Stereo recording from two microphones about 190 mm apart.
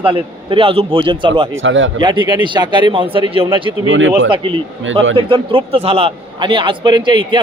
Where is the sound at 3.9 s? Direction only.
90° right.